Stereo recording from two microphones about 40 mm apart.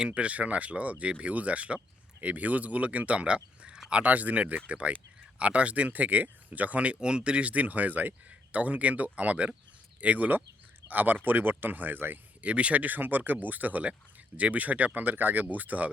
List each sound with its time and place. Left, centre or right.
0.2 s speech: right
7.0 s speech: right
10.8 s speech: right
12.4 s speech: right